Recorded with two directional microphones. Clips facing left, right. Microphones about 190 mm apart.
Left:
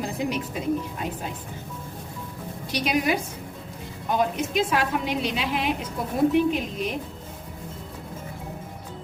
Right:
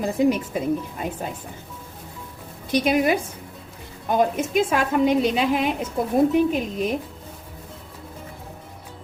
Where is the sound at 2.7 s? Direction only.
50° right (ahead or behind).